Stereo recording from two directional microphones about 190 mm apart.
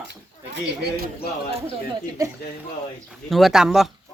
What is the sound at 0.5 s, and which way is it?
Speech, 60° right (ahead or behind).